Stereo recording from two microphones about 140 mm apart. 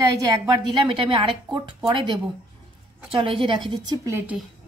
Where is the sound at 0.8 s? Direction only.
40° right (ahead or behind).